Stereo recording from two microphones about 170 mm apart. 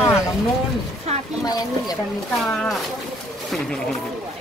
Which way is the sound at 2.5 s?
Centre (ahead or behind).